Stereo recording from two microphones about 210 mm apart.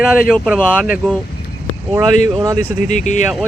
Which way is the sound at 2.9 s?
35° left (ahead or behind).